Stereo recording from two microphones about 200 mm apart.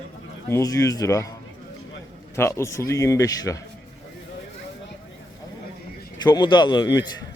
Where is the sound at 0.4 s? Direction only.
15° left (ahead or behind).